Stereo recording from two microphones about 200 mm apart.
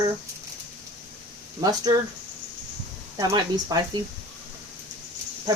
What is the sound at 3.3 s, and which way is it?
Speech, 20° right (ahead or behind).